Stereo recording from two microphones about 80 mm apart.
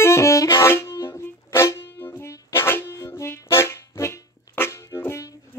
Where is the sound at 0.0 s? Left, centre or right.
Left.